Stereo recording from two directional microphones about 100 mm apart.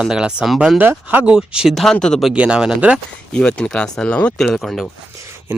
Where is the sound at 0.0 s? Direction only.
5° right (ahead or behind).